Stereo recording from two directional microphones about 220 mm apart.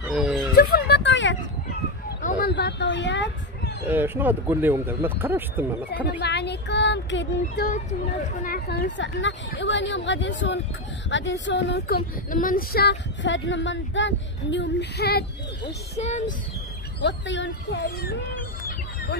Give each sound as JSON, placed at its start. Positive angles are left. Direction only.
{"t": 0.1, "sound": "music", "side_deg": 0}
{"t": 0.6, "sound": "a sound", "side_deg": 45}
{"t": 2.2, "sound": "a sound", "side_deg": 45}
{"t": 3.8, "sound": "speech", "side_deg": -10}
{"t": 6.2, "sound": "a woman's voice", "side_deg": 50}
{"t": 15.6, "sound": "speech", "side_deg": 30}
{"t": 17.0, "sound": "a woman's voice", "side_deg": 55}